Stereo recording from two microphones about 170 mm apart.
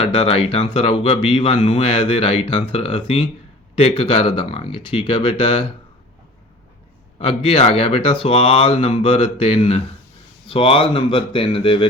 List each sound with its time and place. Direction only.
0.0 s speech: 35° left (ahead or behind)
7.2 s speech: 35° left (ahead or behind)